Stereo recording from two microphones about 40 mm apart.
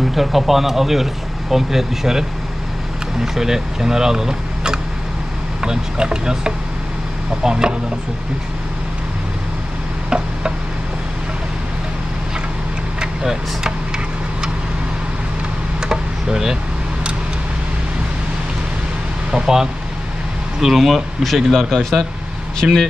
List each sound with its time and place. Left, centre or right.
0.1 s speech: centre
3.3 s speech: centre
10.0 s tick-tock: right
13.0 s vehicle: centre
15.8 s a sound: centre
19.3 s speech: centre
22.6 s speech: centre